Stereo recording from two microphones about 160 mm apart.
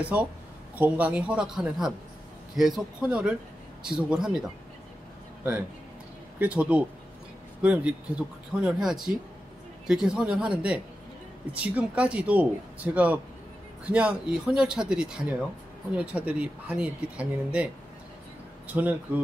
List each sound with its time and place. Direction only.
0.0 s speech: 10° right (ahead or behind)
6.4 s speech: 10° right (ahead or behind)
18.7 s speech: 10° right (ahead or behind)